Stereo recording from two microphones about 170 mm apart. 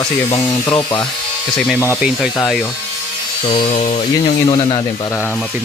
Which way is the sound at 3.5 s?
35° left (ahead or behind).